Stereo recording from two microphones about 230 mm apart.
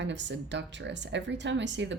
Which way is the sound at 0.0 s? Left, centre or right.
Right.